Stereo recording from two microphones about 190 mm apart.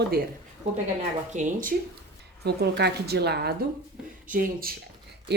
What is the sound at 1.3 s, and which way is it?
Speech, 40° right (ahead or behind).